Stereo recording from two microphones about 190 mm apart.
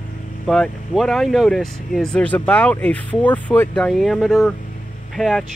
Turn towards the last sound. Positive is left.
turn(degrees=0)  # may be behind; listen again after turning